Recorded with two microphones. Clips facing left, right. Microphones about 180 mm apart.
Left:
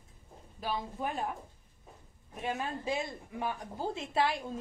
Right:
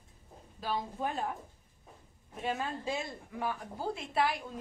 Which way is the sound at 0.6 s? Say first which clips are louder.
Right 1 dB; 15° left (ahead or behind).